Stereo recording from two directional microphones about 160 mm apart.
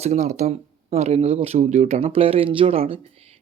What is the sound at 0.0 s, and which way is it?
Speech, 45° right (ahead or behind).